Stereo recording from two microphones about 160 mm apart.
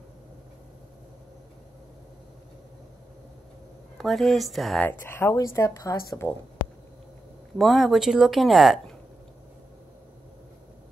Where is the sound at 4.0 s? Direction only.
Centre (ahead or behind).